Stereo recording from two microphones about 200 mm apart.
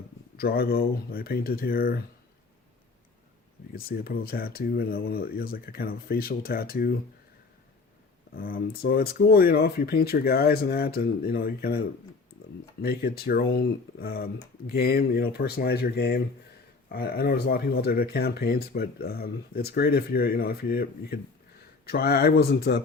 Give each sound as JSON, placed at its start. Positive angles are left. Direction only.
{"t": 0.3, "sound": "speech", "side_deg": 50}
{"t": 3.7, "sound": "speech", "side_deg": 45}
{"t": 8.4, "sound": "speech", "side_deg": 45}
{"t": 12.8, "sound": "speech", "side_deg": 50}